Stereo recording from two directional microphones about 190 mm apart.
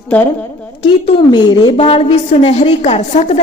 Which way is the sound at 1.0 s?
25° left (ahead or behind).